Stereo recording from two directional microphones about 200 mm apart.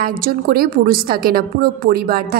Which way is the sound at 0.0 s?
45° right (ahead or behind).